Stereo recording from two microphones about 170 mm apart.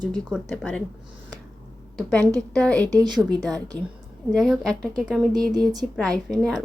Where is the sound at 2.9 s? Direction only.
25° right (ahead or behind).